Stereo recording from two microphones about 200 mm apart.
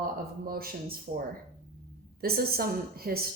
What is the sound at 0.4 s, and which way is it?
Speech, 50° right (ahead or behind).